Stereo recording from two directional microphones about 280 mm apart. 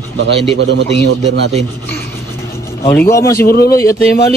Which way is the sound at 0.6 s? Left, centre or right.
Right.